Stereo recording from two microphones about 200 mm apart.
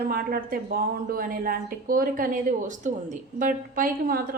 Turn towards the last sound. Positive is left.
turn(degrees=-45)  # may be behind; listen again after turning